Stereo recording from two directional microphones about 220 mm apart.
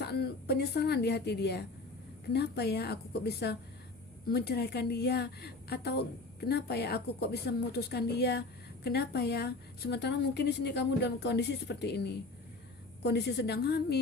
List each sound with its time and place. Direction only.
0.0 s a woman's voice: 45° left (ahead or behind)